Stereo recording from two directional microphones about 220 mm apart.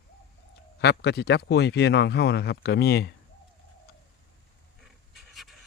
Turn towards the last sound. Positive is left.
turn(degrees=0)  # may be behind; listen again after turning